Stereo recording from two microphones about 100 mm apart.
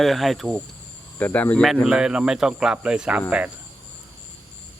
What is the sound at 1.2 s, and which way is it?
Speech, 15° left (ahead or behind).